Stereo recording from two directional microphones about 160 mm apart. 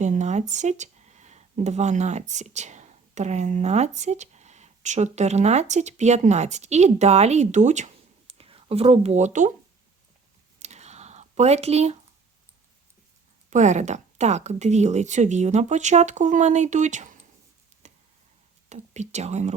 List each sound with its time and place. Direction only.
0.0 s speech: 45° right (ahead or behind)
8.3 s speech: 35° right (ahead or behind)
10.6 s a sound: 45° right (ahead or behind)
13.5 s a woman's voice: 50° right (ahead or behind)
17.8 s a sound: 45° right (ahead or behind)
18.7 s speech: 45° right (ahead or behind)